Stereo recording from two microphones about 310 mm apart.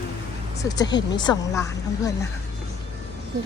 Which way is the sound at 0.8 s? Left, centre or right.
Centre.